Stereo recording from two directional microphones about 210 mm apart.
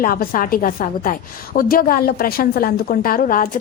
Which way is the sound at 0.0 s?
40° left (ahead or behind).